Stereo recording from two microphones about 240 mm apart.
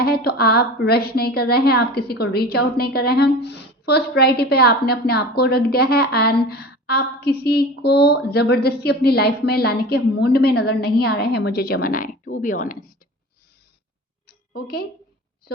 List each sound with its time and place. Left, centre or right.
0.0 s a woman's voice: left
14.5 s a woman's voice: left